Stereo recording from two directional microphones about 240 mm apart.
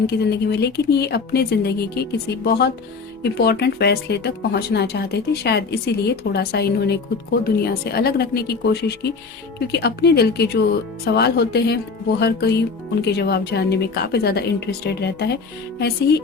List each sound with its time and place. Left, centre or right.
0.1 s a woman's voice: left